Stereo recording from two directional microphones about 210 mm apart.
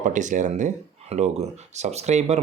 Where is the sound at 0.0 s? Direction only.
35° right (ahead or behind).